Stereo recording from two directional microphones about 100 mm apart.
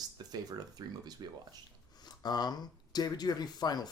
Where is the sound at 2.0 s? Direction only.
45° left (ahead or behind).